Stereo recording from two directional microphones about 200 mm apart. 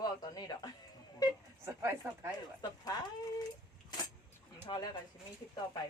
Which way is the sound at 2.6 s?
20° left (ahead or behind).